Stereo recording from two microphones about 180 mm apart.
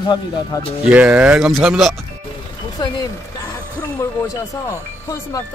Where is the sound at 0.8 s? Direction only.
10° right (ahead or behind).